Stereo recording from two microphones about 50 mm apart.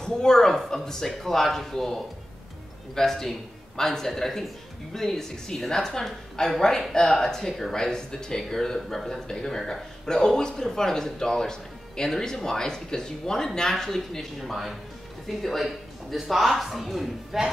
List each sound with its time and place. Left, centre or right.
0.0 s speech: centre